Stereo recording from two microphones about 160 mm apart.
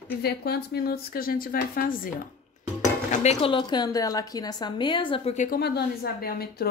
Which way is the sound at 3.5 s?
30° left (ahead or behind).